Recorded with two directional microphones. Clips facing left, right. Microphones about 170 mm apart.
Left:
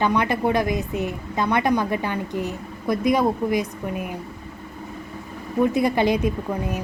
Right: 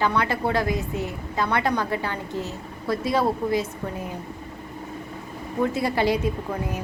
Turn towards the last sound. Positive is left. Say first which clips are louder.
# left 2 dB
turn(degrees=20)  # may be behind; listen again after turning